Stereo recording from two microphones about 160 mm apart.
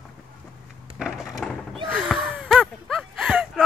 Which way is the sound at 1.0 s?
5° right (ahead or behind).